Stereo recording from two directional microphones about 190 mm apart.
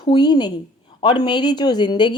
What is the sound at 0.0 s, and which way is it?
Speech, 25° left (ahead or behind).